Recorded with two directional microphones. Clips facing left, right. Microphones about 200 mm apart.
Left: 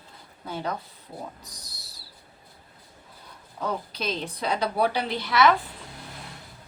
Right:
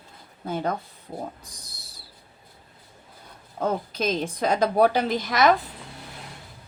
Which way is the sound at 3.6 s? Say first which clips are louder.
Right 5 dB; 45° right (ahead or behind).